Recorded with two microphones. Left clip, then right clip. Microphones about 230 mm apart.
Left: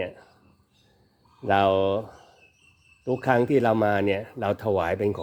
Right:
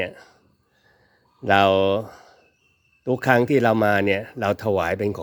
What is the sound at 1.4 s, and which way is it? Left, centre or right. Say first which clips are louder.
Speech: right 4 dB; right.